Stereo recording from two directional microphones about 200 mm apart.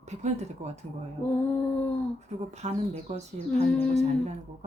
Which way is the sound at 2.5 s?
35° right (ahead or behind).